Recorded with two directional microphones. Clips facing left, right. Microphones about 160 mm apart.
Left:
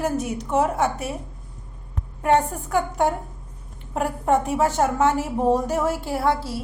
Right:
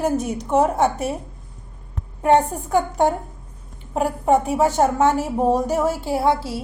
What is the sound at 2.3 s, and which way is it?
Speech, 20° right (ahead or behind).